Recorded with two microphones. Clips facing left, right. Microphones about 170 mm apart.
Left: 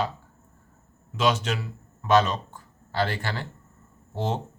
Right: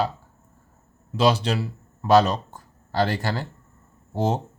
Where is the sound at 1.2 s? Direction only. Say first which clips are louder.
Right 4 dB; 35° right (ahead or behind).